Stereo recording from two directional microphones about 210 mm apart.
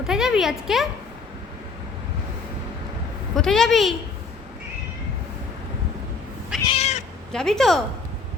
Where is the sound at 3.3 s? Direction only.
Centre (ahead or behind).